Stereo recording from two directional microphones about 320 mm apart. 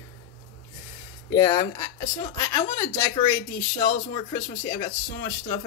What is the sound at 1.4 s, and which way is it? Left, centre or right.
Speech, centre.